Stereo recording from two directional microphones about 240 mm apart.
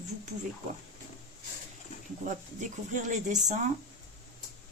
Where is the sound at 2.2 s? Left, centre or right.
Right.